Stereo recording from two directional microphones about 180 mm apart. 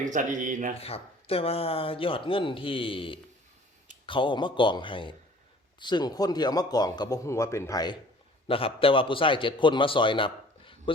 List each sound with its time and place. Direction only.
0.0 s speech: 45° right (ahead or behind)
0.8 s a man's voice: 35° left (ahead or behind)
8.4 s a man's voice: 30° left (ahead or behind)